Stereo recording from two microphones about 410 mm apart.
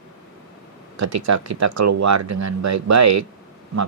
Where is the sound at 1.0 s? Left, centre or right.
Right.